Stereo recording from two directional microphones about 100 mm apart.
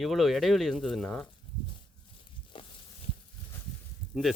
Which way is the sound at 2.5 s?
65° left (ahead or behind).